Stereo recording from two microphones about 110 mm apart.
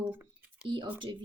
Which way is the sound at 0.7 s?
45° right (ahead or behind).